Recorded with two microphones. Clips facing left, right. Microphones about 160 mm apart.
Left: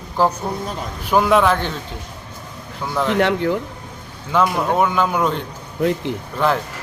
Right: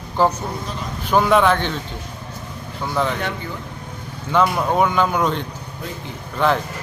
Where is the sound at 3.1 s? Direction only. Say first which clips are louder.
Left 10 dB; 70° left (ahead or behind).